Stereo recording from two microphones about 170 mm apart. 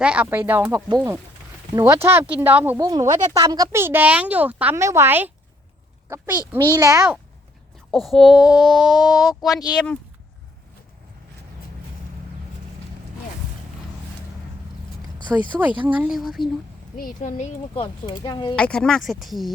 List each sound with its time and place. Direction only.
0.0 s speech: 5° right (ahead or behind)
2.8 s speech: 20° right (ahead or behind)
7.9 s speech: centre (ahead or behind)
9.5 s a child's voice: 20° left (ahead or behind)
9.7 s speech: 5° left (ahead or behind)
15.3 s speech: 5° right (ahead or behind)
17.0 s speech: 50° left (ahead or behind)
17.7 s a child's voice: 25° left (ahead or behind)
18.5 s speech: 5° left (ahead or behind)